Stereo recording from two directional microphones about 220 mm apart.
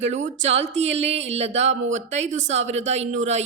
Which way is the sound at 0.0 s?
30° right (ahead or behind).